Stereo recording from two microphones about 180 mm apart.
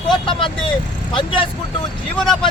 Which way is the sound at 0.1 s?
30° left (ahead or behind).